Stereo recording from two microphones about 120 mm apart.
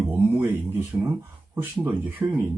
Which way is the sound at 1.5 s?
15° right (ahead or behind).